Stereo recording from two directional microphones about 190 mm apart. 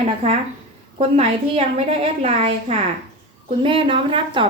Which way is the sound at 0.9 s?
30° right (ahead or behind).